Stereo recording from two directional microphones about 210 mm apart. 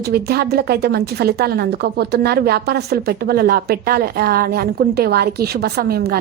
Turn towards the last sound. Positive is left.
turn(degrees=-50)  # may be behind; listen again after turning